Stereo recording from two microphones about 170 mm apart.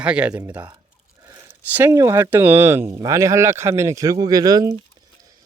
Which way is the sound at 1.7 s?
10° right (ahead or behind).